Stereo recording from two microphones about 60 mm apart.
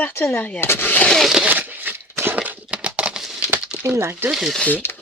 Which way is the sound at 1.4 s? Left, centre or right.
Right.